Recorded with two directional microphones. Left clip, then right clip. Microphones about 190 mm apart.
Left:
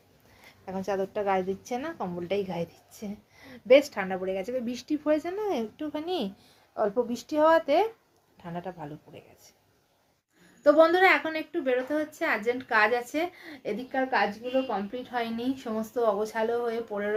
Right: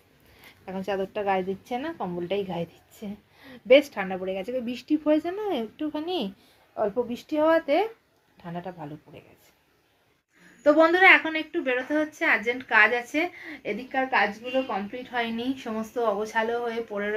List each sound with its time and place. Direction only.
0.6 s a woman's voice: centre (ahead or behind)
10.6 s a woman's voice: 5° left (ahead or behind)